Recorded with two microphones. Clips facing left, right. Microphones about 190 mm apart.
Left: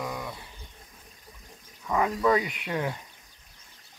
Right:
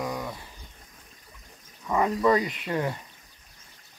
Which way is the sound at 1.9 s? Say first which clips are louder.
Right 2 dB; centre (ahead or behind).